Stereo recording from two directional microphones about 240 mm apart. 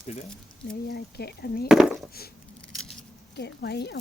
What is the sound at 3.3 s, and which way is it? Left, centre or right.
Speech, left.